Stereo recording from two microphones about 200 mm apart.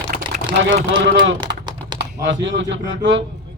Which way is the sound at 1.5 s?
50° right (ahead or behind).